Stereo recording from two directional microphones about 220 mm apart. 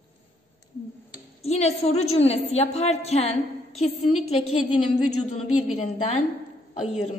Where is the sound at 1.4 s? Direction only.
30° left (ahead or behind).